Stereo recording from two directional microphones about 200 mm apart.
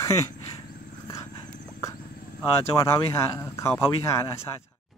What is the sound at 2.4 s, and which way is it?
Speech, 15° left (ahead or behind).